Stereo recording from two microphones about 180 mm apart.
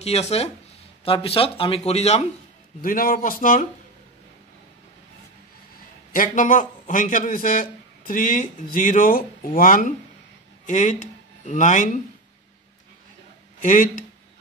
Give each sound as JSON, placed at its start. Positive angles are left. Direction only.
{"t": 0.0, "sound": "speech", "side_deg": 35}
{"t": 2.8, "sound": "speech", "side_deg": 50}
{"t": 6.1, "sound": "speech", "side_deg": 45}
{"t": 13.6, "sound": "speech", "side_deg": 45}